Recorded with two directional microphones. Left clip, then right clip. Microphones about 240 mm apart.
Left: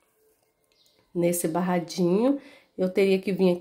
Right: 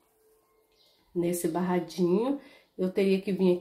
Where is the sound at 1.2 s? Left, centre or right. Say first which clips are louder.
Left 4 dB; left.